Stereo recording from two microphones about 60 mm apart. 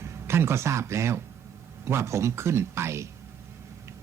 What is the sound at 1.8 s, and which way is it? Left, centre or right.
Speech, right.